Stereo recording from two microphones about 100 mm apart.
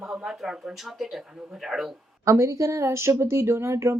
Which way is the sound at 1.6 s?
5° right (ahead or behind).